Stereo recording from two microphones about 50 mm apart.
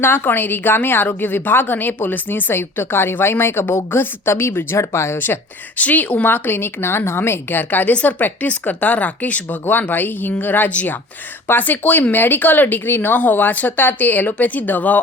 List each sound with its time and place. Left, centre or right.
0.0 s a woman's voice: left
5.1 s a woman's voice: left
5.7 s speech: left
6.3 s a woman's voice: left
10.7 s speech: left
11.4 s speech: left